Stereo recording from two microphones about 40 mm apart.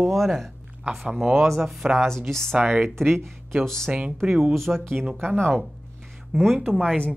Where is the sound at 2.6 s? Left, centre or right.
Right.